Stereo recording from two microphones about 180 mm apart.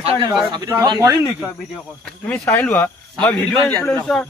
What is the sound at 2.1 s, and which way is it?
Speech, 5° left (ahead or behind).